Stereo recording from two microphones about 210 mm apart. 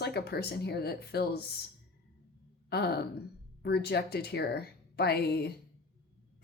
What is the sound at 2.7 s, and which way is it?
Speech, 50° left (ahead or behind).